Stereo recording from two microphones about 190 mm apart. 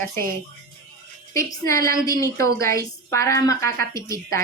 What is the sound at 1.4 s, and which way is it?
A woman's voice, 15° left (ahead or behind).